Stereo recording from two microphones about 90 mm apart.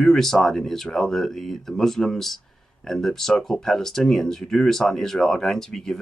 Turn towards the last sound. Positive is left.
turn(degrees=5)  # may be behind; listen again after turning